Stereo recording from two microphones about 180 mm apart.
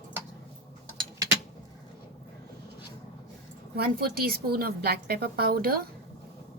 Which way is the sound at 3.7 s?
60° right (ahead or behind).